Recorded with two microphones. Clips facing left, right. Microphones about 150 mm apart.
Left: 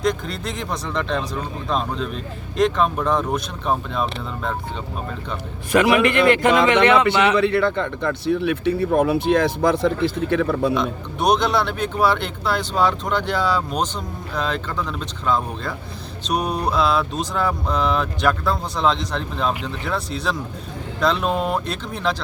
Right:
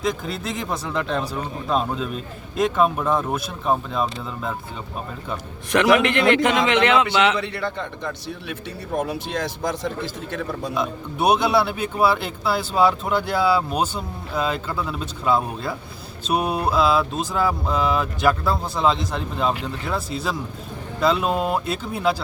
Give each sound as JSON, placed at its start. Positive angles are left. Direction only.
{"t": 0.0, "sound": "speech", "side_deg": -5}
{"t": 5.7, "sound": "speech", "side_deg": 0}
{"t": 7.3, "sound": "speech", "side_deg": 60}
{"t": 10.8, "sound": "speech", "side_deg": -5}